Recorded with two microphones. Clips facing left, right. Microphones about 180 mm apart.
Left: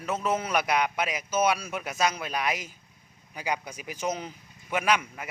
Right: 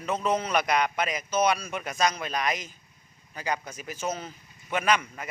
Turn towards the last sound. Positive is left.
turn(degrees=10)  # may be behind; listen again after turning